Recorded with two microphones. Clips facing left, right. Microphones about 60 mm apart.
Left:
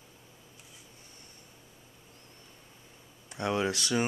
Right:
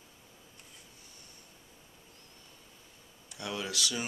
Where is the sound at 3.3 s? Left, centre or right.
Left.